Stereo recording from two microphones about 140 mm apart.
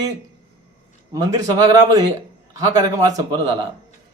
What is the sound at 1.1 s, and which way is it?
A man's voice, 25° right (ahead or behind).